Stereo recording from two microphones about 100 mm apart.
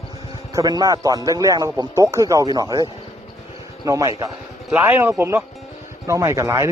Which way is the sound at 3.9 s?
35° right (ahead or behind).